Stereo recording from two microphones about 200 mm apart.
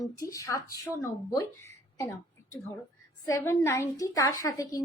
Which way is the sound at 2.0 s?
15° left (ahead or behind).